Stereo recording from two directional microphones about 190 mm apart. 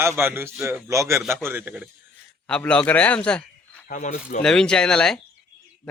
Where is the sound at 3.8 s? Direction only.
40° left (ahead or behind).